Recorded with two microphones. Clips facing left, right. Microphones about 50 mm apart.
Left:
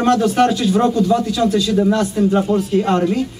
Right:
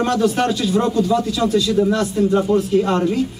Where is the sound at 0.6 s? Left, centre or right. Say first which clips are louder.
Left 3 dB; centre.